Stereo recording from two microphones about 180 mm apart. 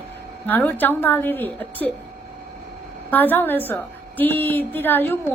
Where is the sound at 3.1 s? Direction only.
10° left (ahead or behind).